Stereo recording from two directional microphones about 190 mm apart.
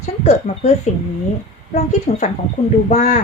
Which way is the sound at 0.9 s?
35° left (ahead or behind).